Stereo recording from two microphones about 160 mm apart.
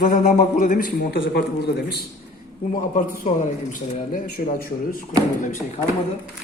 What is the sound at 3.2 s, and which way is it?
Speech, 45° left (ahead or behind).